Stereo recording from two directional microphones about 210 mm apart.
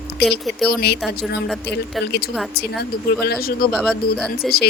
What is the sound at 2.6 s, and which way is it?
Speech, 50° left (ahead or behind).